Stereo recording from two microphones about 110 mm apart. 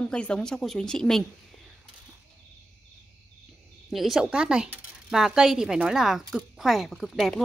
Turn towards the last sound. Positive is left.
turn(degrees=0)  # may be behind; listen again after turning